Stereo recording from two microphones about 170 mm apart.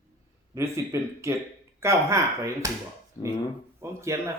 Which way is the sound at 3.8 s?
15° right (ahead or behind).